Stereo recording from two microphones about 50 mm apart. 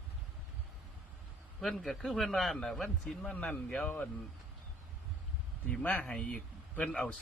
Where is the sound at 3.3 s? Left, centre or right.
Left.